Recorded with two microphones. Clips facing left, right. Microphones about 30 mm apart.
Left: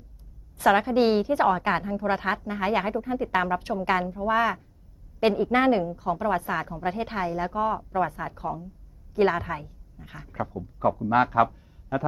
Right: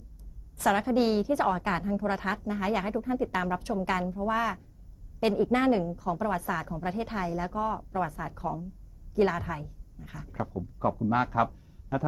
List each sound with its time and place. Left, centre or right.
0.6 s a woman's voice: left